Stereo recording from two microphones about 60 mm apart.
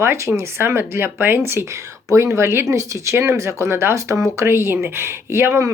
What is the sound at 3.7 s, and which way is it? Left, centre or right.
Speech, right.